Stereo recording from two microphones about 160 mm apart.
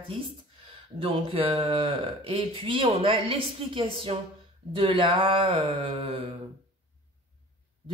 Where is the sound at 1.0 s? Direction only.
35° right (ahead or behind).